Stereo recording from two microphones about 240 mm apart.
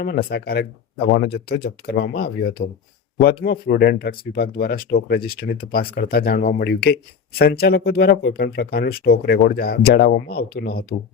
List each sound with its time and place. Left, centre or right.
0.0 s speech: left